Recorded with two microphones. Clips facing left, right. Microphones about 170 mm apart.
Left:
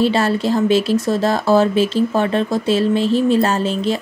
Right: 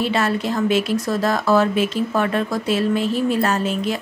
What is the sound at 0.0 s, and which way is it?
Speech, 30° left (ahead or behind).